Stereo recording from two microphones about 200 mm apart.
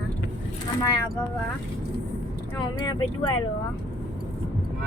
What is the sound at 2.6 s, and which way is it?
Speech, 20° left (ahead or behind).